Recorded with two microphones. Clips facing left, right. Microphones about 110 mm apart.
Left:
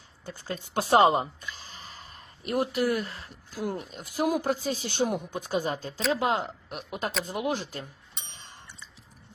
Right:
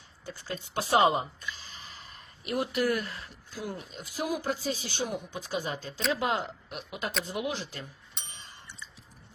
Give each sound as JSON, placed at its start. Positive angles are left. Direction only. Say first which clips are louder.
{"t": 0.3, "sound": "speech", "louder": "left 2 dB", "side_deg": 45}
{"t": 2.8, "sound": "speech", "louder": "left 2 dB", "side_deg": 15}
{"t": 3.1, "sound": "speech", "louder": "even", "side_deg": 30}
{"t": 3.5, "sound": "speech", "louder": "left 5 dB", "side_deg": 50}
{"t": 6.1, "sound": "speech", "louder": "left 3 dB", "side_deg": 30}
{"t": 8.3, "sound": "a sound", "louder": "left 1 dB", "side_deg": 40}